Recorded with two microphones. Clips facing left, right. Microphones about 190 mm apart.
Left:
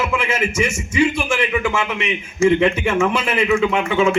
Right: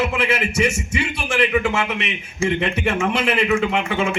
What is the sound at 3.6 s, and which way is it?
Speech, 60° left (ahead or behind).